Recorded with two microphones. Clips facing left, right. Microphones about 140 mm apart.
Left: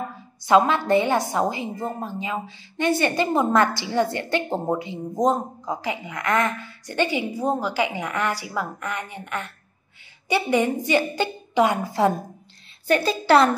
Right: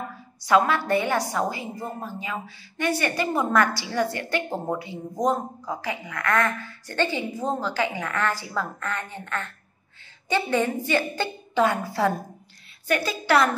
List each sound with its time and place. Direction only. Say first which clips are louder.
0.4 s a woman's voice: left 3 dB; 25° left (ahead or behind)
12.8 s a woman's voice: left 4 dB; 30° left (ahead or behind)